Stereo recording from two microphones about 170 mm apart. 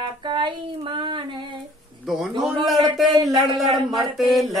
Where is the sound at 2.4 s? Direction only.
Centre (ahead or behind).